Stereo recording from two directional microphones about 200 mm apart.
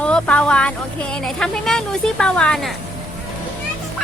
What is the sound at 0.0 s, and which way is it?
Speech, 5° left (ahead or behind).